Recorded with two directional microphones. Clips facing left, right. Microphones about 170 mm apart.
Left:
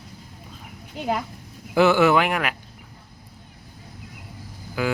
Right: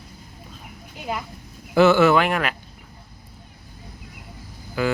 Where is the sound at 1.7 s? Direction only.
15° left (ahead or behind).